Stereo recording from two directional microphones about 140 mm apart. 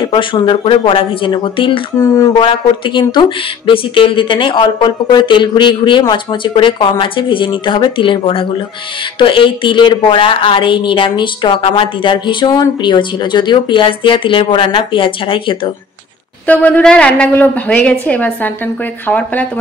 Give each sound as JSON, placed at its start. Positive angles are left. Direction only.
{"t": 0.0, "sound": "a woman's voice", "side_deg": 35}
{"t": 2.0, "sound": "a sound", "side_deg": 25}
{"t": 2.4, "sound": "a woman's voice", "side_deg": 35}
{"t": 16.4, "sound": "a woman's voice", "side_deg": 10}